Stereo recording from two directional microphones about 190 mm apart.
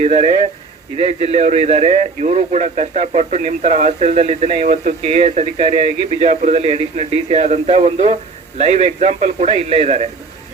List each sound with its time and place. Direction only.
0.0 s a man's voice: 35° right (ahead or behind)